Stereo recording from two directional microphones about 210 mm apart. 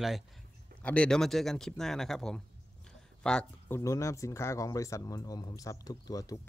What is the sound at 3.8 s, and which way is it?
Speech, 15° left (ahead or behind).